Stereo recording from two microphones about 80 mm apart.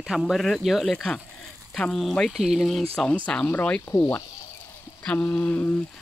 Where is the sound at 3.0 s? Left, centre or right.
Centre.